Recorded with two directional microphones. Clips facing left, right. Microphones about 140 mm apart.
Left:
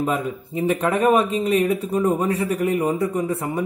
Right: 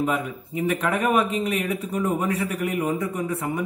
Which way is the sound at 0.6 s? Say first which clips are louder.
Left 3 dB; 30° left (ahead or behind).